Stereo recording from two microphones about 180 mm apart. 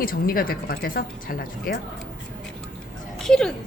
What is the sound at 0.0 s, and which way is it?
A woman's voice, 55° left (ahead or behind).